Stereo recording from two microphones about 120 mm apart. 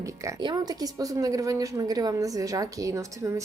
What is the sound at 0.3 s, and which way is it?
A woman's voice, 35° right (ahead or behind).